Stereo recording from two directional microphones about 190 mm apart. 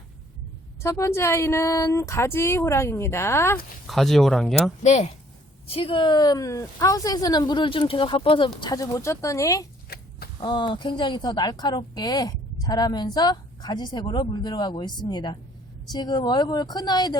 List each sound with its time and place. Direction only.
0.8 s speech: 15° left (ahead or behind)
3.8 s speech: centre (ahead or behind)
4.8 s a woman's voice: 35° left (ahead or behind); by 17.2 s 20° left (ahead or behind)